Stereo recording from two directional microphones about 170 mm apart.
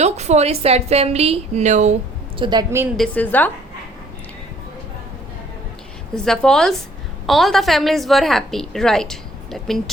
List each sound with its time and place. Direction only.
0.0 s a woman's voice: 40° right (ahead or behind)
2.4 s a woman's voice: 25° right (ahead or behind)
3.0 s a woman's voice: 10° left (ahead or behind)
6.2 s a woman's voice: 5° left (ahead or behind)